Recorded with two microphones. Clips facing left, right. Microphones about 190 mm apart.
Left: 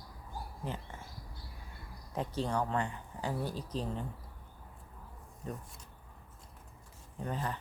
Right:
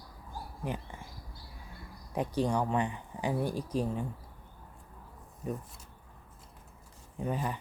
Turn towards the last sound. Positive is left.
turn(degrees=-10)  # may be behind; listen again after turning